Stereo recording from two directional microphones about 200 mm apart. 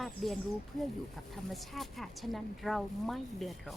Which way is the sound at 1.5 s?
Centre (ahead or behind).